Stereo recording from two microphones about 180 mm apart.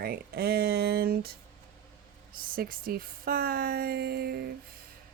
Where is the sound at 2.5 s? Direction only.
55° right (ahead or behind).